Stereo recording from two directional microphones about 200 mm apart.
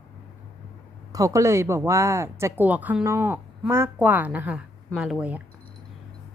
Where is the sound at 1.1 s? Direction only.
15° right (ahead or behind).